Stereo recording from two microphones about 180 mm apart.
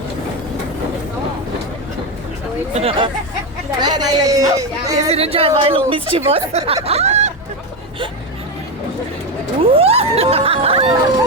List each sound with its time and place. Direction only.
2.7 s a woman's voice: 30° right (ahead or behind)
4.9 s a woman's voice: 35° right (ahead or behind)
6.8 s a sound: 35° right (ahead or behind)
9.7 s speech: 35° right (ahead or behind)